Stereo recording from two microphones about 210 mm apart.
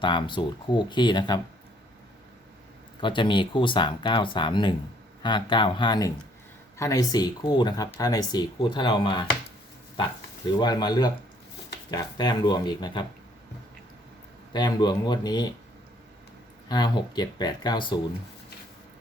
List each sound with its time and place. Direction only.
0.0 s speech: 20° left (ahead or behind)
3.0 s speech: 25° left (ahead or behind)
10.6 s speech: 20° left (ahead or behind)
14.5 s speech: 20° left (ahead or behind)
16.6 s speech: 20° left (ahead or behind)